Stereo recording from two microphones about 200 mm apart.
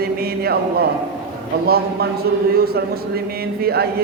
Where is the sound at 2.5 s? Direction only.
50° right (ahead or behind).